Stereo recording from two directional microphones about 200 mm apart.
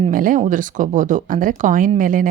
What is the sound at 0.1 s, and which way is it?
A woman's voice, 45° right (ahead or behind).